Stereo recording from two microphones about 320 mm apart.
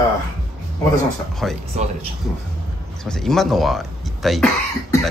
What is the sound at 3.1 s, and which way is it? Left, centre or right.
A man's voice, centre.